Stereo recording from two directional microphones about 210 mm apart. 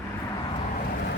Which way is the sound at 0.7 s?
45° left (ahead or behind).